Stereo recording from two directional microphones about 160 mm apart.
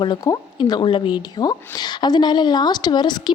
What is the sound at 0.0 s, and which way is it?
A woman's voice, 30° left (ahead or behind).